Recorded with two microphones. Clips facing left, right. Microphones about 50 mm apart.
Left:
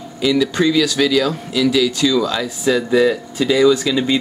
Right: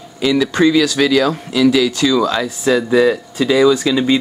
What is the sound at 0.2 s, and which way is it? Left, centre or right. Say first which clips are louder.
Speech: right 2 dB; right.